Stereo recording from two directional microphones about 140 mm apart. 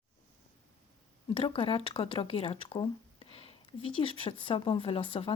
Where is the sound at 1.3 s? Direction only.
40° left (ahead or behind).